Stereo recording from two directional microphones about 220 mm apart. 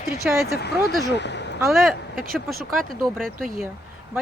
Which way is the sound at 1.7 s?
Centre (ahead or behind).